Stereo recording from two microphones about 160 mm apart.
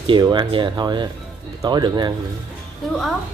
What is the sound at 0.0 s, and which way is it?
Speech, 30° right (ahead or behind).